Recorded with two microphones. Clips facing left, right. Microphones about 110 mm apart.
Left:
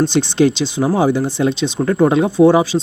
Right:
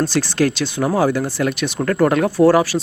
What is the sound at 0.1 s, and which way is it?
Speech, 20° left (ahead or behind).